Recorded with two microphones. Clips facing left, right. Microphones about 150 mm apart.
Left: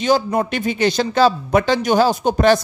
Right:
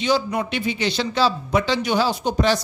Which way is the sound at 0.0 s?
45° left (ahead or behind).